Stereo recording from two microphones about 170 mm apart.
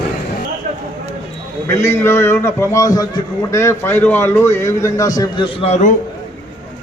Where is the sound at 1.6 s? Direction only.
15° left (ahead or behind); by 5.9 s 40° left (ahead or behind).